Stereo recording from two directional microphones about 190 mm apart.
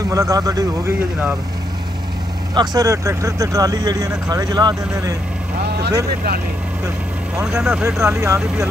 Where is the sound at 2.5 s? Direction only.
20° right (ahead or behind).